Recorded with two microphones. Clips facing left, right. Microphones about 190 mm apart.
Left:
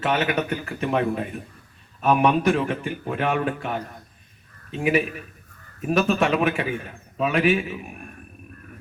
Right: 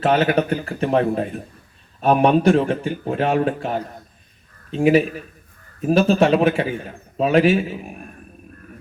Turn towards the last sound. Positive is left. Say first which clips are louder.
# right 4 dB
turn(degrees=-30)  # may be behind; listen again after turning